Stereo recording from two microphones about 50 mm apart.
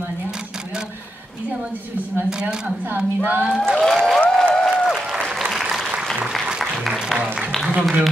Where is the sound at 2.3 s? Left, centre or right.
Centre.